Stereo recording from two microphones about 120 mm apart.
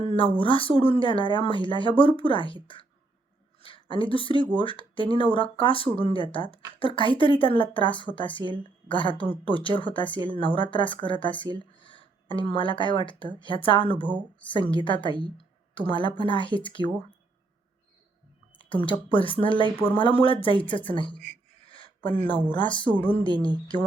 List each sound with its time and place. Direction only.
0.3 s speech: 45° left (ahead or behind)
3.6 s a woman's voice: 45° left (ahead or behind)
18.5 s speech: 45° left (ahead or behind)
21.7 s a sound: 45° left (ahead or behind)
22.5 s speech: 40° left (ahead or behind)